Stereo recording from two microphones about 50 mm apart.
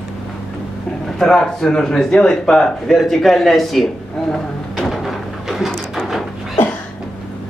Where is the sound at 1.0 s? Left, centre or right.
Centre.